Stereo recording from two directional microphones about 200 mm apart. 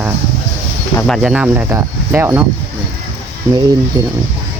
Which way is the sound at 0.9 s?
Centre (ahead or behind).